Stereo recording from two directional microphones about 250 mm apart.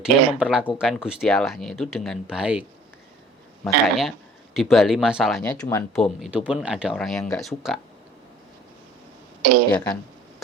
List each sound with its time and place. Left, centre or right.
0.0 s speech: centre
3.8 s speech: centre
9.4 s speech: right
9.7 s speech: centre